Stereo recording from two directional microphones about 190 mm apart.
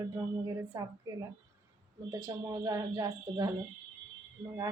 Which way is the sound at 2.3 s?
20° right (ahead or behind).